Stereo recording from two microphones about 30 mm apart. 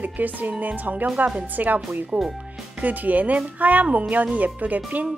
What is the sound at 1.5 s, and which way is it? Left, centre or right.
Speech, right.